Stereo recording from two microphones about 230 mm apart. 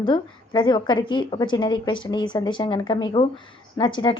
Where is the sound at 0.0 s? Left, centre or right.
Centre.